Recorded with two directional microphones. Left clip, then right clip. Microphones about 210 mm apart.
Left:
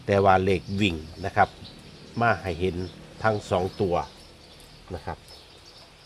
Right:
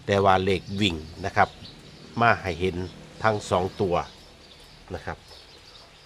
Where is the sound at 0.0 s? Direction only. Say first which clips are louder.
Left 1 dB; 10° left (ahead or behind).